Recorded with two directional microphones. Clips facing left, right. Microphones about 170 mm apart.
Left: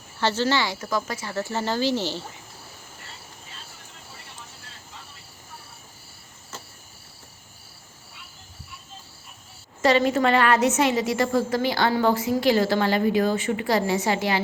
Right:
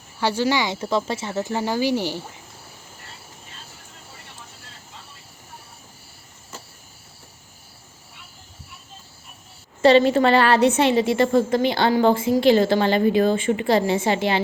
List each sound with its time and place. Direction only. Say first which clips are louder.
0.2 s speech: right 2 dB; 10° right (ahead or behind)
0.8 s speech: right 4 dB; 25° right (ahead or behind)
9.8 s a woman's voice: right 5 dB; 30° right (ahead or behind)